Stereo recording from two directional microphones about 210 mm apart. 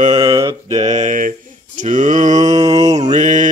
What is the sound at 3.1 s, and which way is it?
Mantra, 35° right (ahead or behind).